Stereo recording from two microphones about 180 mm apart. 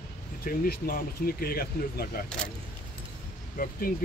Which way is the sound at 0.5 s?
55° left (ahead or behind).